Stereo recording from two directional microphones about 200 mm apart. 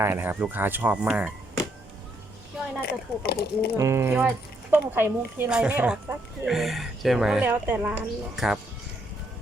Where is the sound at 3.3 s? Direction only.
50° left (ahead or behind).